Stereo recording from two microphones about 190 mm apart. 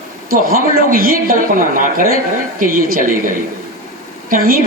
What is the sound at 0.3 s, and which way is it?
A woman's voice, 50° right (ahead or behind).